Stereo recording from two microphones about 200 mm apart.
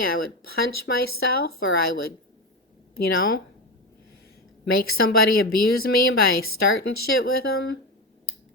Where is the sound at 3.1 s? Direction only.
50° left (ahead or behind).